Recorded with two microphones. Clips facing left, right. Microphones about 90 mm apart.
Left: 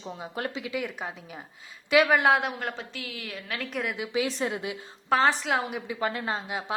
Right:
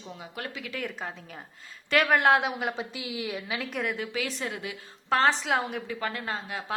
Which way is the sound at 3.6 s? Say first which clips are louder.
Left 2 dB; centre (ahead or behind).